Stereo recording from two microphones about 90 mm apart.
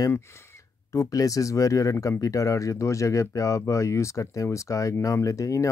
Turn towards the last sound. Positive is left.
turn(degrees=35)  # may be behind; listen again after turning